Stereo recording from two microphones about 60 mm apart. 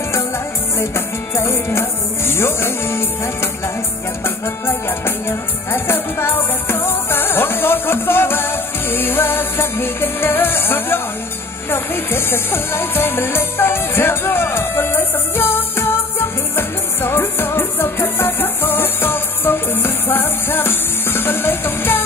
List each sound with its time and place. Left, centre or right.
0.7 s music: left